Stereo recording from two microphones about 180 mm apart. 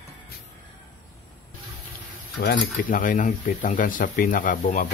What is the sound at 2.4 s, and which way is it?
Speech, 55° left (ahead or behind).